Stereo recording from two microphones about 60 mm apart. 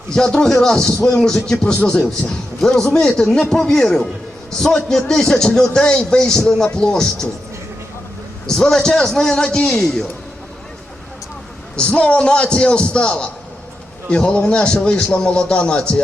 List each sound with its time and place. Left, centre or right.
0.1 s a man's voice: centre
1.8 s a man's voice: left
2.2 s a man's voice: centre
8.4 s a man's voice: centre
11.8 s a man's voice: centre